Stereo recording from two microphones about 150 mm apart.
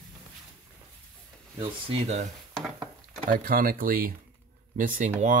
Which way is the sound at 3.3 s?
70° right (ahead or behind).